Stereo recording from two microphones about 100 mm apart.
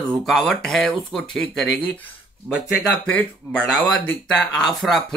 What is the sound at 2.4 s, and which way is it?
Speech, 15° right (ahead or behind).